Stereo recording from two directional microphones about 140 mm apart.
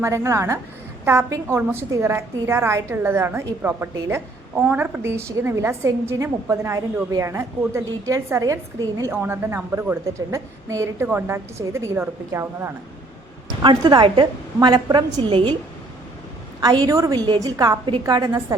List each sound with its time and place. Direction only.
0.0 s a woman's voice: 20° right (ahead or behind)
13.6 s a woman's voice: 30° right (ahead or behind)
16.6 s a woman's voice: 30° right (ahead or behind)